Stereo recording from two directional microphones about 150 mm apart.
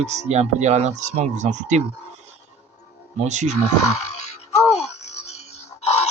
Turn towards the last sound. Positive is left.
turn(degrees=45)  # may be behind; listen again after turning